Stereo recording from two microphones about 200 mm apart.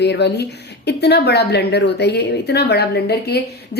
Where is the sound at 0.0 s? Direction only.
55° left (ahead or behind).